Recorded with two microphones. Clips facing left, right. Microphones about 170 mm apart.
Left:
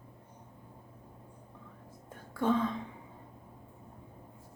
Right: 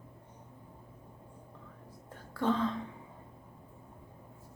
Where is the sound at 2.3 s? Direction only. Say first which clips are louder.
Left 1 dB; 15° left (ahead or behind).